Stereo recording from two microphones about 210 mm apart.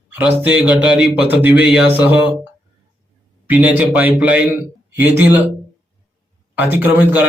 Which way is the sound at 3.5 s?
5° right (ahead or behind).